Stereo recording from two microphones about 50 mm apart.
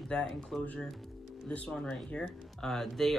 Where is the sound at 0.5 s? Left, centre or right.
Centre.